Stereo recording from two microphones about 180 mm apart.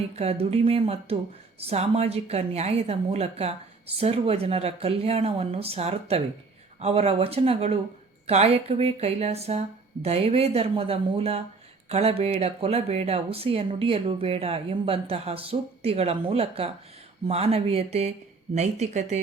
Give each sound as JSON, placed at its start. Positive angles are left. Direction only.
{"t": 0.2, "sound": "speech", "side_deg": -35}